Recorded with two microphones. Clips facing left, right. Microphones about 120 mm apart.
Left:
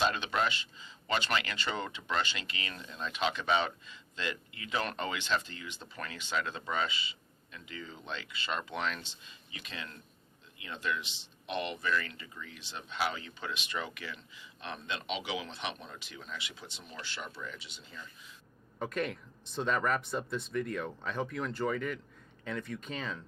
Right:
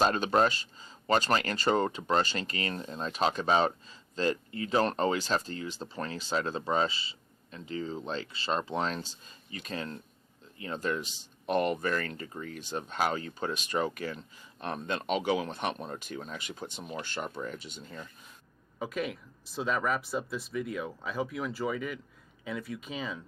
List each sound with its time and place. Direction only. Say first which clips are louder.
0.0 s speech: right 6 dB; 40° right (ahead or behind)
18.8 s speech: right 1 dB; 5° right (ahead or behind)